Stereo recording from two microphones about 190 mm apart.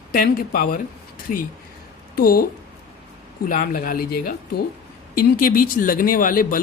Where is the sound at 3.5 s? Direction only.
45° left (ahead or behind).